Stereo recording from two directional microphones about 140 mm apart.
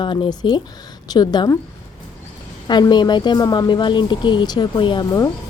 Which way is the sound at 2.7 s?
30° left (ahead or behind).